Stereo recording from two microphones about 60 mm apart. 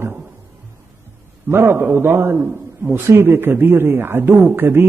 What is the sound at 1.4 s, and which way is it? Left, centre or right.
A man's voice, right.